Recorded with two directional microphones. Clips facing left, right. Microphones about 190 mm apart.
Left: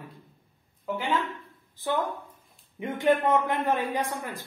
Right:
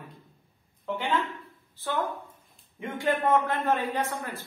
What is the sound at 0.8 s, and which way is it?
Speech, 10° left (ahead or behind).